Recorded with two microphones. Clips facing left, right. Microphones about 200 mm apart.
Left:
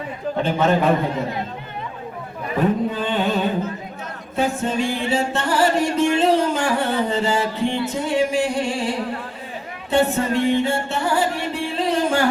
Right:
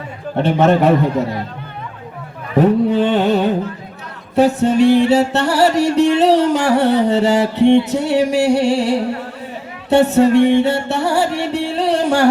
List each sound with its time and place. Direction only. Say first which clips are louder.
0.3 s music: right 6 dB; 70° right (ahead or behind)
2.6 s music: right 8 dB; 70° right (ahead or behind)